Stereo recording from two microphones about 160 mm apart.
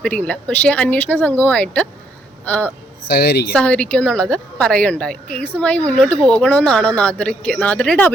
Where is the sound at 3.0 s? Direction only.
90° left.